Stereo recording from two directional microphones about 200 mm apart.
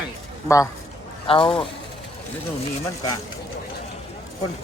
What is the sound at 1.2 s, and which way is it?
Speech, 25° left (ahead or behind).